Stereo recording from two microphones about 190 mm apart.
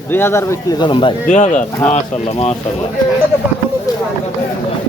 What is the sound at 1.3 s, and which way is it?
Speech, 40° left (ahead or behind).